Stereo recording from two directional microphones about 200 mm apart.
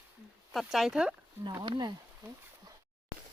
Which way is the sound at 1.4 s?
20° right (ahead or behind).